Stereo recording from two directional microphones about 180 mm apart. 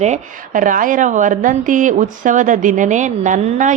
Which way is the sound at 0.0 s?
45° right (ahead or behind).